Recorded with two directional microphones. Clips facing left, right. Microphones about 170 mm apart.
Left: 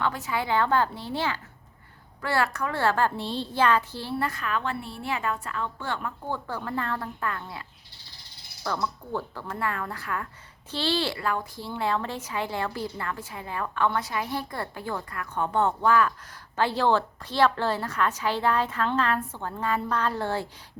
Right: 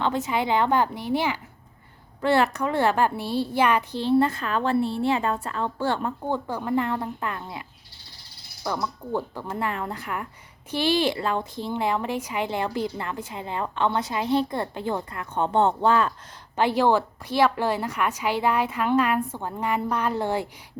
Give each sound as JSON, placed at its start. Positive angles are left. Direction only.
{"t": 0.0, "sound": "a woman's voice", "side_deg": -20}
{"t": 6.2, "sound": "a woman's voice", "side_deg": -15}
{"t": 8.6, "sound": "a woman's voice", "side_deg": -15}
{"t": 16.6, "sound": "a woman's voice", "side_deg": -15}